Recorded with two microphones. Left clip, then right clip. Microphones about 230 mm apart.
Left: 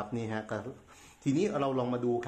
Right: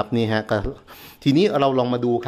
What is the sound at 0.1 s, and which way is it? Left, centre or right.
Speech, right.